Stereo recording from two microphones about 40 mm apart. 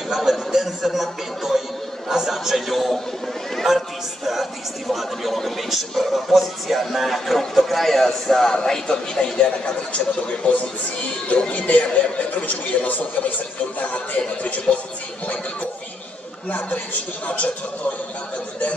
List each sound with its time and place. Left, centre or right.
0.1 s speech: centre
3.6 s a man's voice: centre
9.9 s a man's voice: left
13.9 s speech: left
16.4 s a woman's voice: left